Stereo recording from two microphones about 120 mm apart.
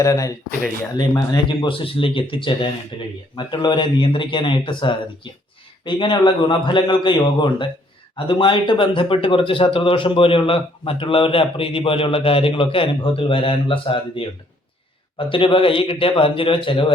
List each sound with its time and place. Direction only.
0.0 s speech: 25° left (ahead or behind)
1.6 s speech: 45° left (ahead or behind)
15.3 s speech: 45° left (ahead or behind)